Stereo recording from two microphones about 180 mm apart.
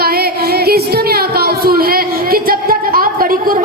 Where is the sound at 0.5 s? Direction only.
60° right (ahead or behind).